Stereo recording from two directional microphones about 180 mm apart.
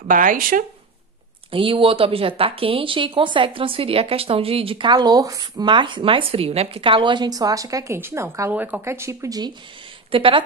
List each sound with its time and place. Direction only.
0.1 s speech: 50° right (ahead or behind)
1.5 s speech: 30° right (ahead or behind)
10.1 s speech: 30° right (ahead or behind)